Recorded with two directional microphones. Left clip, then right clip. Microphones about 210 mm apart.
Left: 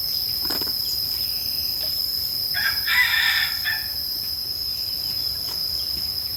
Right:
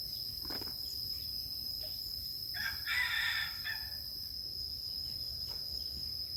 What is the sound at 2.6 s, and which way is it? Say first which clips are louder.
Chicken: left 15 dB; 45° right (ahead or behind).